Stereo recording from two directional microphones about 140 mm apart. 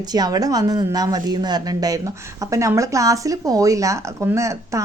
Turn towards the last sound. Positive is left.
turn(degrees=-20)  # may be behind; listen again after turning